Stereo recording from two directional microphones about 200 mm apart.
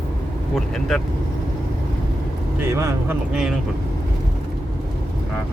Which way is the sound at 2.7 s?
15° right (ahead or behind).